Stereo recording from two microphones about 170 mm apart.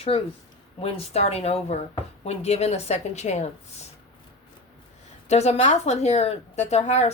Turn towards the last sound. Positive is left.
turn(degrees=40)  # may be behind; listen again after turning